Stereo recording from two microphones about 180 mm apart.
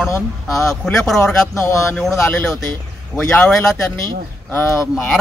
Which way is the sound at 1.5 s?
15° left (ahead or behind).